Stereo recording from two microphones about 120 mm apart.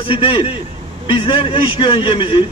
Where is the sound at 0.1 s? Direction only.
45° left (ahead or behind).